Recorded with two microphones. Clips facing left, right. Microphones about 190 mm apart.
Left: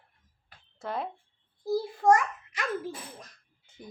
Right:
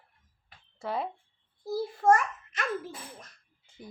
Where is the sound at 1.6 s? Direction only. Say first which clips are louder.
Left 2 dB; 15° left (ahead or behind).